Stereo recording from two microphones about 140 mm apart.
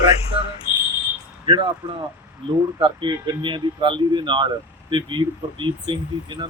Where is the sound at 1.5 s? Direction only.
35° right (ahead or behind).